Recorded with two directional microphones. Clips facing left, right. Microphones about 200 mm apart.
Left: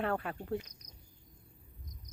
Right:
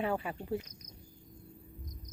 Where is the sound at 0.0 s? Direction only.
5° right (ahead or behind).